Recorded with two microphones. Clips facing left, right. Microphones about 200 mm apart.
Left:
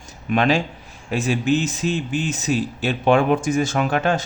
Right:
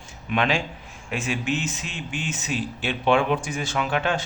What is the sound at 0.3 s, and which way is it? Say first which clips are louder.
Speech: left 5 dB; 40° left (ahead or behind).